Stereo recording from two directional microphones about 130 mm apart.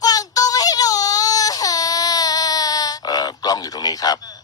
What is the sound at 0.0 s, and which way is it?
Baby cry, 30° left (ahead or behind).